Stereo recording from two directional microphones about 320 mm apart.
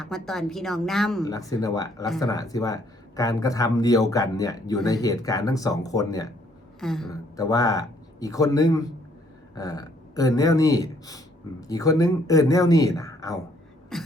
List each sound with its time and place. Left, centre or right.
0.0 s a woman's voice: centre
7.3 s a man's voice: centre
13.9 s beatboxing: centre